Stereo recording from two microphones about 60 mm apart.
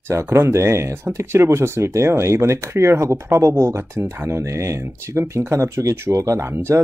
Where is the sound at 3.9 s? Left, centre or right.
Right.